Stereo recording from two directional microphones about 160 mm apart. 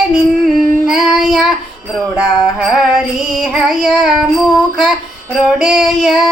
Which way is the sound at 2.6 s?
5° right (ahead or behind).